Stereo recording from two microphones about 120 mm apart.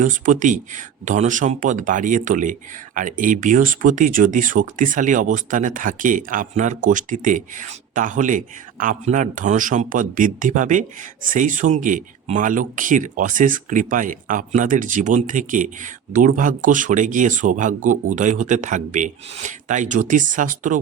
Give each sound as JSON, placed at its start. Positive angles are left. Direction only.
{"t": 0.0, "sound": "speech", "side_deg": -90}